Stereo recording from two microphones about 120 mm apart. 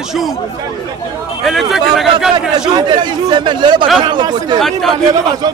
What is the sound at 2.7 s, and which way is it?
Speech, 40° right (ahead or behind).